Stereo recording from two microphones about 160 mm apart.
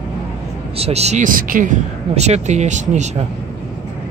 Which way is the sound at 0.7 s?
40° right (ahead or behind).